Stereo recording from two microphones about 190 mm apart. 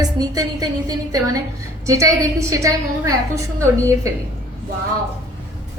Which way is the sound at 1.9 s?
15° right (ahead or behind).